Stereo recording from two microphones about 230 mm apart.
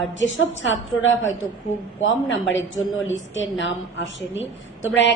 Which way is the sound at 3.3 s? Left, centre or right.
Left.